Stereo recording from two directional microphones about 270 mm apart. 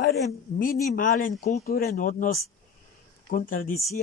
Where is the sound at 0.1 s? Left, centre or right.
Left.